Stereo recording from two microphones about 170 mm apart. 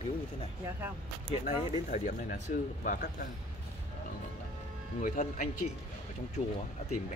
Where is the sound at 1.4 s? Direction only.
55° left (ahead or behind).